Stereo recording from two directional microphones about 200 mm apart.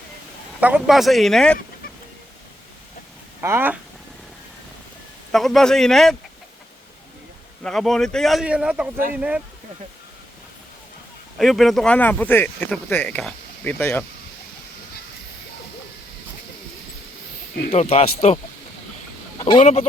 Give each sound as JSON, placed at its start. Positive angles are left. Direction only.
{"t": 0.6, "sound": "speech", "side_deg": -5}
{"t": 3.4, "sound": "speech", "side_deg": -10}
{"t": 5.3, "sound": "speech", "side_deg": 0}
{"t": 7.6, "sound": "speech", "side_deg": 0}
{"t": 11.3, "sound": "speech", "side_deg": 0}
{"t": 17.7, "sound": "speech", "side_deg": 30}
{"t": 19.5, "sound": "speech", "side_deg": 35}